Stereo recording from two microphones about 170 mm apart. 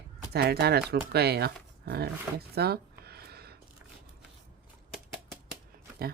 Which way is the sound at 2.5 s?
70° right (ahead or behind).